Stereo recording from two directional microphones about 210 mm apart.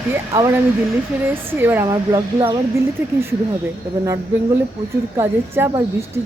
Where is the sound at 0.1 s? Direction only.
15° right (ahead or behind).